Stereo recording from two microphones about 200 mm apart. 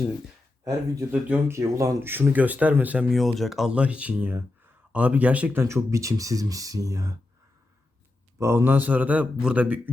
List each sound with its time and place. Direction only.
1.1 s speech: 10° right (ahead or behind)
8.4 s speech: 15° right (ahead or behind)